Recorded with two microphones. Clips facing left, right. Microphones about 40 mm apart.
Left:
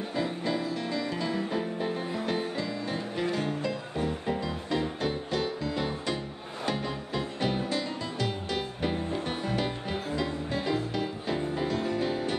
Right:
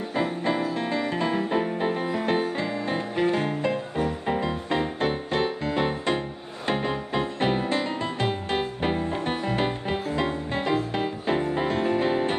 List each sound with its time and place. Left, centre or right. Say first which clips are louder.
0.1 s music: right 5 dB; right